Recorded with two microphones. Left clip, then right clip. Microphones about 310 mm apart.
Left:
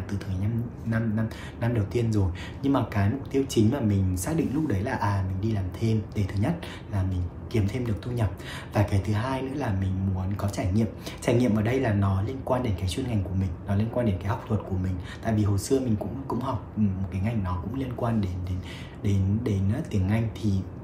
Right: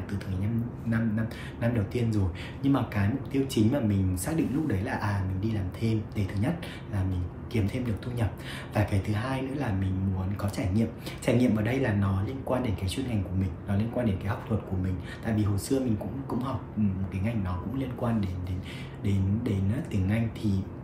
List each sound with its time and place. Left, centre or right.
0.1 s speech: centre
17.1 s speech: centre